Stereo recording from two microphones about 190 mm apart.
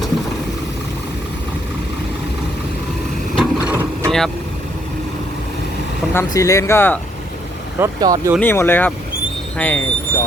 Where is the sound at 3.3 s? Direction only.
5° right (ahead or behind).